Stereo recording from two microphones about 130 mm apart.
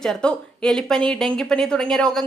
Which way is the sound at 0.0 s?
5° left (ahead or behind).